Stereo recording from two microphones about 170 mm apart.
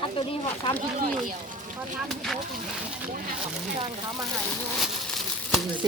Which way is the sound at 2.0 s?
Centre (ahead or behind).